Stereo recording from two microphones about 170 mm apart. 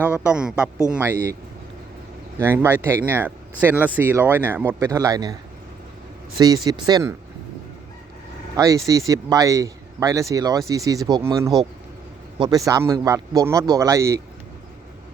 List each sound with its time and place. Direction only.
0.3 s speech: 5° right (ahead or behind)
2.4 s speech: 15° right (ahead or behind)
8.5 s speech: 20° right (ahead or behind)